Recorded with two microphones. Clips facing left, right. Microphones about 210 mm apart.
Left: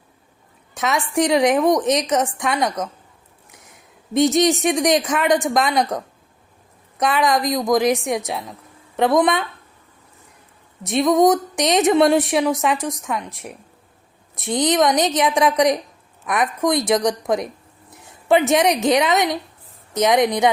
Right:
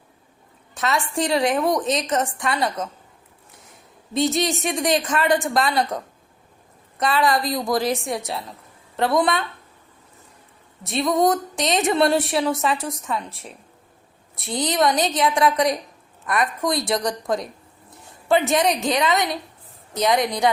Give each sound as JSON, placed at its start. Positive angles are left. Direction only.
{"t": 0.8, "sound": "a woman's voice", "side_deg": 15}
{"t": 4.1, "sound": "a woman's voice", "side_deg": 20}
{"t": 7.0, "sound": "a woman's voice", "side_deg": 15}
{"t": 11.1, "sound": "a woman's voice", "side_deg": 20}